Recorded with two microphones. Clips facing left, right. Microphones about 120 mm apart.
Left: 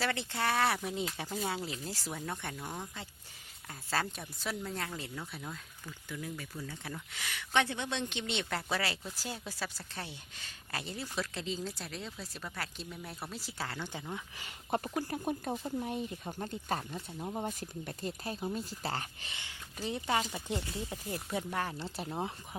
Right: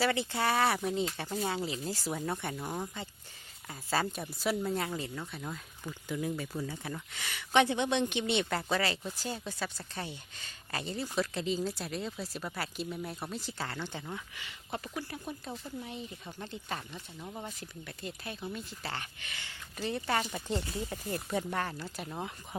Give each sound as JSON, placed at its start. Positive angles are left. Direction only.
{"t": 0.0, "sound": "speech", "side_deg": -5}
{"t": 5.8, "sound": "speech", "side_deg": -25}
{"t": 6.8, "sound": "speech", "side_deg": 0}
{"t": 7.5, "sound": "speech", "side_deg": -15}
{"t": 14.3, "sound": "speech", "side_deg": 45}
{"t": 19.3, "sound": "speech", "side_deg": 15}
{"t": 21.8, "sound": "speech", "side_deg": 25}